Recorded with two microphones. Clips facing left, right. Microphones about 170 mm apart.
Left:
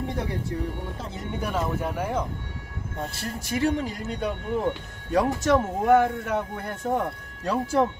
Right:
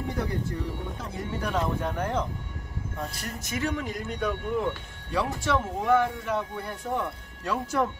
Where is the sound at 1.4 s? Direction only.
5° left (ahead or behind).